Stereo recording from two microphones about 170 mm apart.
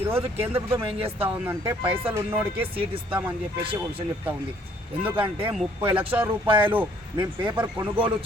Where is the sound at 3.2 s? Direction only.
10° right (ahead or behind).